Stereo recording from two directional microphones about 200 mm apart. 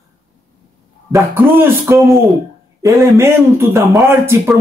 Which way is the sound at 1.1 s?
10° right (ahead or behind).